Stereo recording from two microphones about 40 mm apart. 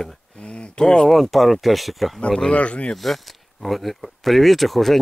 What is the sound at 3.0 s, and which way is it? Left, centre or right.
Speech, centre.